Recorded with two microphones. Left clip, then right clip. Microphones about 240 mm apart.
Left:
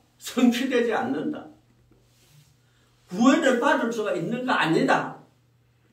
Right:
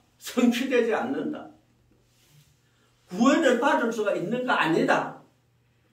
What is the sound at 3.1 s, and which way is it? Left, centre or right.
A man's voice, centre.